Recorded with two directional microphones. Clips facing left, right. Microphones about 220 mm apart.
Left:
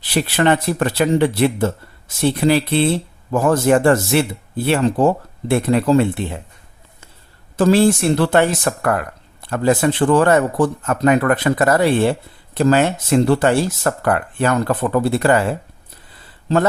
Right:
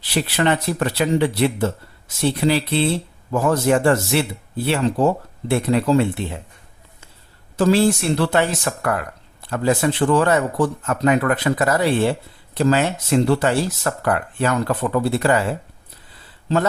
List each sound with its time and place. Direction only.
0.1 s speech: 50° left (ahead or behind)
7.5 s speech: 50° left (ahead or behind)